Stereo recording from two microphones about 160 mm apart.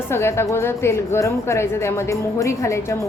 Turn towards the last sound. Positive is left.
turn(degrees=20)  # may be behind; listen again after turning